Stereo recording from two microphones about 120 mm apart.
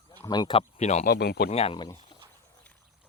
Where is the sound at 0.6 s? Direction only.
65° left (ahead or behind).